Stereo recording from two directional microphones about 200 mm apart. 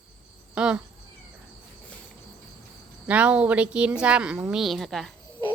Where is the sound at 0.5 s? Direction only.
5° right (ahead or behind).